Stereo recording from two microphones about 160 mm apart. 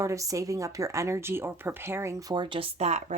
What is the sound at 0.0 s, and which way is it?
Speech, 20° right (ahead or behind).